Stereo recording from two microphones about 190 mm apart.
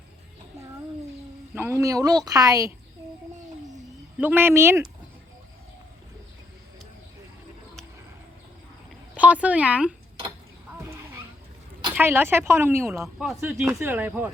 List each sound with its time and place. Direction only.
1.5 s speech: 15° right (ahead or behind)
4.2 s speech: 10° right (ahead or behind)
9.1 s speech: 5° right (ahead or behind)
10.8 s wild animals: 15° right (ahead or behind)
11.9 s speech: 10° right (ahead or behind)